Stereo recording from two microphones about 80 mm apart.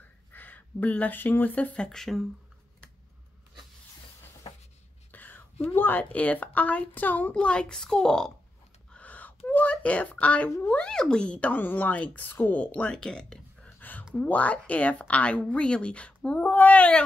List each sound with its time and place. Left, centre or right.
0.3 s speech: left
1.9 s speech: centre
5.1 s a woman's voice: left; by 8.3 s centre
8.9 s speech: centre
13.7 s a sound: left
14.1 s speech: centre